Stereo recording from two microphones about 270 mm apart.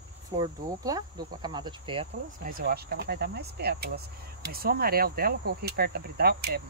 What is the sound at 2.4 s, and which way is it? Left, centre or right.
Speech, right.